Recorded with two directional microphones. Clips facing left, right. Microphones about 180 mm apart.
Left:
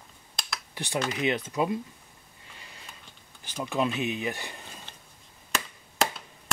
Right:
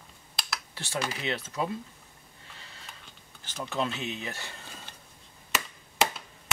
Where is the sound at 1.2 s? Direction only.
15° left (ahead or behind).